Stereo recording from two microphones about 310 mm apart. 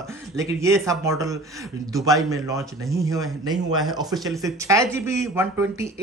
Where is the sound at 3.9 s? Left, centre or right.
Centre.